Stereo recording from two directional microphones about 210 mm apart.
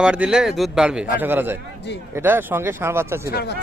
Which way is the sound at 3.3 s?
50° left (ahead or behind).